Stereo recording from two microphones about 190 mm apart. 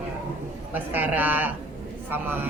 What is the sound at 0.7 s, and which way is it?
Speech, 10° right (ahead or behind).